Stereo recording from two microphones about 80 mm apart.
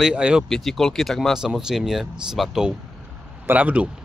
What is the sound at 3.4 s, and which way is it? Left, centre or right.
Speech, centre.